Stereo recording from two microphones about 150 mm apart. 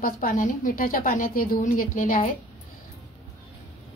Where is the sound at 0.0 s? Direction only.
65° left (ahead or behind).